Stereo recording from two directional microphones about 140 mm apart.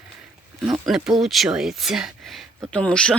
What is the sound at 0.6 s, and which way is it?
Speech, 30° right (ahead or behind).